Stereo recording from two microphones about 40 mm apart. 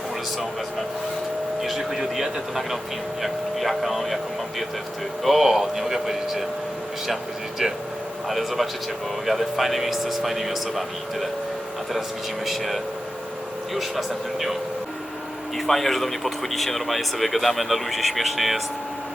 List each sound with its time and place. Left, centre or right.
1.6 s speech: centre
5.2 s speech: centre
7.6 s speech: centre
12.5 s speech: centre
15.5 s speech: centre